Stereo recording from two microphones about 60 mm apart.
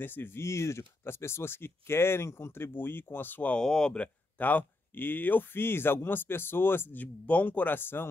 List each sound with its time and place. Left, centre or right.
0.0 s speech: left
0.4 s speech: left
3.5 s speech: centre
4.4 s speech: left